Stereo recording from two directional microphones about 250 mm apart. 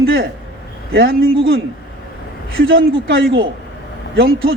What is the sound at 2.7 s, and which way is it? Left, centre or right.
Speech, right.